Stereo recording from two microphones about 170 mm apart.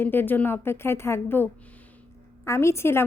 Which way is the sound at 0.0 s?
10° left (ahead or behind).